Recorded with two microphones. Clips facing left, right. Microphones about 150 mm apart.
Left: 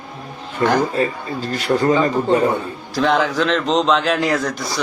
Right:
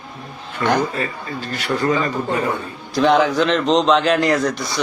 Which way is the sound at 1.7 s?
30° left (ahead or behind).